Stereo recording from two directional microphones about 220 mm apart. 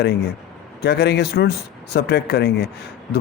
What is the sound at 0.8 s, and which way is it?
Speech, 45° left (ahead or behind).